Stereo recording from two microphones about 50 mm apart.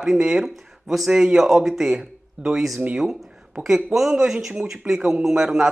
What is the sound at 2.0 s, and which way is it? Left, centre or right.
Speech, centre.